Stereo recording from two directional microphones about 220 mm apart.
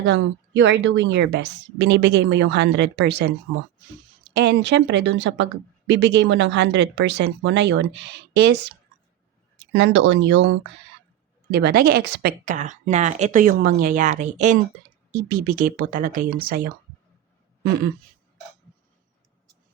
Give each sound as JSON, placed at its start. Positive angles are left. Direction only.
{"t": 0.0, "sound": "a woman's voice", "side_deg": -55}
{"t": 4.4, "sound": "a woman's voice", "side_deg": -50}
{"t": 9.7, "sound": "a woman's voice", "side_deg": -55}
{"t": 11.5, "sound": "speech", "side_deg": -45}
{"t": 12.5, "sound": "speech", "side_deg": -35}